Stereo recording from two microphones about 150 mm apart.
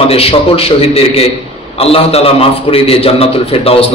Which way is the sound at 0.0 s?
40° left (ahead or behind).